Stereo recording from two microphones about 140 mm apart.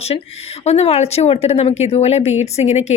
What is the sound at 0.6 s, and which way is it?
Speech, 50° left (ahead or behind).